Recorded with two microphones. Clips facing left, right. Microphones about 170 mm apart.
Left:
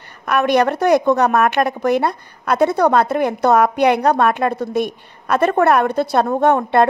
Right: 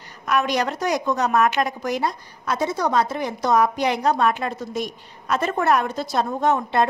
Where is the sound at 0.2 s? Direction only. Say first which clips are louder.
Left 6 dB; 60° left (ahead or behind).